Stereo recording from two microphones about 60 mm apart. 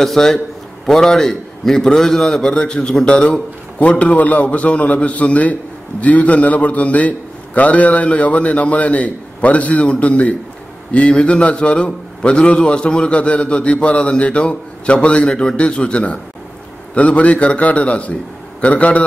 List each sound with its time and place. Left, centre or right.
0.0 s a man's voice: centre; by 19.0 s left